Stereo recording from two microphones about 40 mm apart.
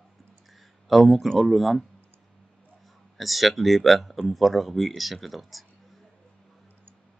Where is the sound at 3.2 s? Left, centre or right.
Centre.